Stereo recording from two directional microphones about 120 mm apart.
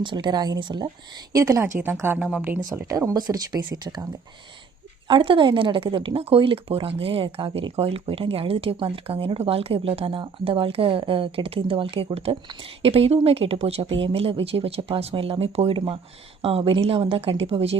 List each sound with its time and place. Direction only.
0.0 s speech: 40° right (ahead or behind)
1.3 s a woman's voice: 25° right (ahead or behind); by 17.7 s 55° right (ahead or behind)